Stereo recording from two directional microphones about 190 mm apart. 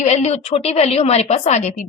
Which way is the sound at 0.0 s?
35° left (ahead or behind).